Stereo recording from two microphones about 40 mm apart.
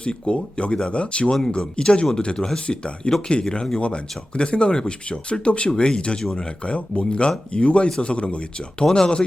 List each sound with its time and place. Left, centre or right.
0.0 s speech: left